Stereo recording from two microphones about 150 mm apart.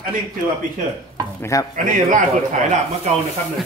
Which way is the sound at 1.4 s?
20° left (ahead or behind).